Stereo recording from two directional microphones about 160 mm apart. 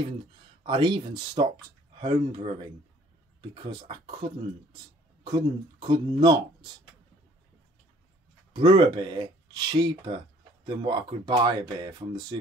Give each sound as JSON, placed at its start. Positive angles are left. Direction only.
{"t": 0.7, "sound": "speech", "side_deg": -30}
{"t": 8.5, "sound": "speech", "side_deg": -30}